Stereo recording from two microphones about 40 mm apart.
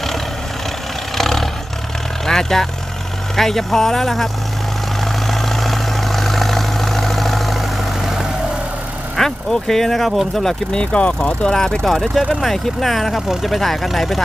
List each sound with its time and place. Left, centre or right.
1.1 s roar: centre
2.2 s speech: centre
5.3 s vehicle: centre
9.1 s speech: centre
10.7 s speech: left; by 14.2 s centre